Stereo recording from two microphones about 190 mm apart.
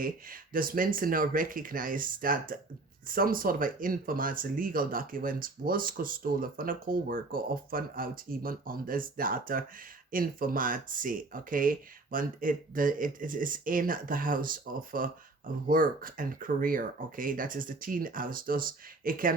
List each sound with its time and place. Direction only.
0.0 s speech: 50° right (ahead or behind)